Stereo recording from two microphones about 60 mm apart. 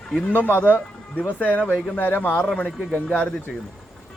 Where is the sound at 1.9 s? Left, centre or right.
Left.